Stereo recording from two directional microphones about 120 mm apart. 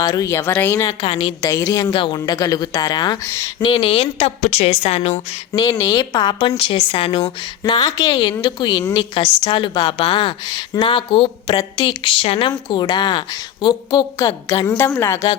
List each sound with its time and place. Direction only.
0.0 s speech: 30° left (ahead or behind)
1.7 s speech: 35° left (ahead or behind)
3.2 s speech: 25° left (ahead or behind)
3.6 s a woman's voice: 45° left (ahead or behind); by 5.4 s 65° left (ahead or behind)
5.5 s speech: 30° left (ahead or behind)
6.6 s a woman's voice: 50° left (ahead or behind)
7.6 s a woman's voice: 35° left (ahead or behind)